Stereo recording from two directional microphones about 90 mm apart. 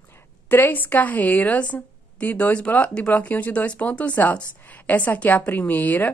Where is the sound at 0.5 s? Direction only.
20° left (ahead or behind).